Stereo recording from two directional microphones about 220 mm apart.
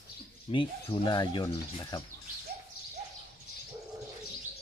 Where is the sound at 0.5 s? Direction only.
25° left (ahead or behind).